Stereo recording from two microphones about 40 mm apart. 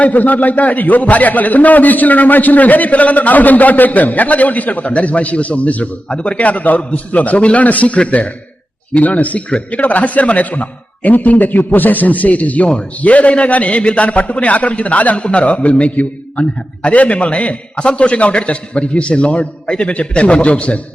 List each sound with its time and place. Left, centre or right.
0.0 s a man's voice: left